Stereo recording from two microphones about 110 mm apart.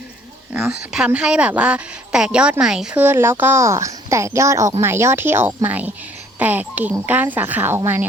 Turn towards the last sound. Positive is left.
turn(degrees=-15)  # may be behind; listen again after turning